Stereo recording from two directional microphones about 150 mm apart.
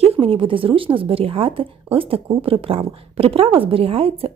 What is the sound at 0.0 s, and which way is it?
A woman's voice, 40° right (ahead or behind).